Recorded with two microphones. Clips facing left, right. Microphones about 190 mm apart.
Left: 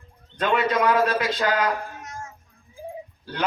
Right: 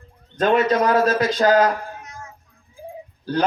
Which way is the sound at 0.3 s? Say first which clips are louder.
Right 5 dB; 40° right (ahead or behind).